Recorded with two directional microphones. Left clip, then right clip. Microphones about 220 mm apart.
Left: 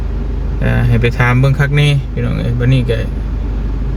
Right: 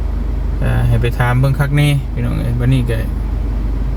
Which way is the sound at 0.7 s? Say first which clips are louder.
Left 5 dB; 15° left (ahead or behind).